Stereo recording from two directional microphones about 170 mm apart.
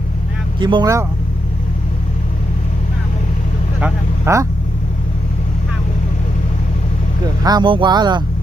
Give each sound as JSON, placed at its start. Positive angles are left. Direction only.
{"t": 0.6, "sound": "speech", "side_deg": -25}
{"t": 3.8, "sound": "speech", "side_deg": -15}
{"t": 7.4, "sound": "speech", "side_deg": -25}